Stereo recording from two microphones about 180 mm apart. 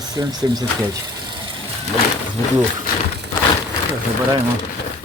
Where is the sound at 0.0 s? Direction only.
20° right (ahead or behind).